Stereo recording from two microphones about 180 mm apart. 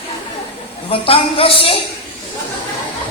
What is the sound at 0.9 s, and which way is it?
Speech, 30° left (ahead or behind).